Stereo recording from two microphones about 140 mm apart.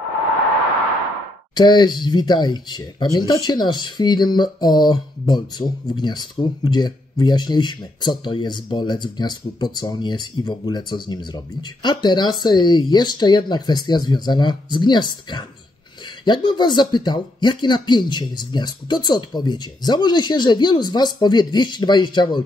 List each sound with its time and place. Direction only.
1.6 s speech: 30° left (ahead or behind)